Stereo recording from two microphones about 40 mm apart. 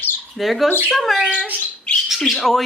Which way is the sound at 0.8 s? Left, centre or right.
Centre.